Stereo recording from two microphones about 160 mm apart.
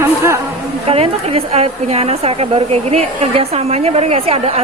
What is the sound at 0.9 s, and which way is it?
A woman's voice, 40° right (ahead or behind).